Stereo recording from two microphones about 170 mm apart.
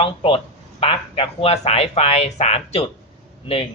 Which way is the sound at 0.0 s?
30° left (ahead or behind).